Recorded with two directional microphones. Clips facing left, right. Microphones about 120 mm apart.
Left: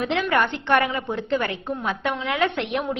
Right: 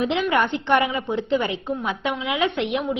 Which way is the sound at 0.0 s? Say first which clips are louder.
Right 1 dB; 15° right (ahead or behind).